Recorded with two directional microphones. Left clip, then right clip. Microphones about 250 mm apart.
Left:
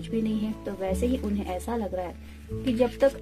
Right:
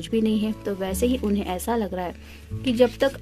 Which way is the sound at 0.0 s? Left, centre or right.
Right.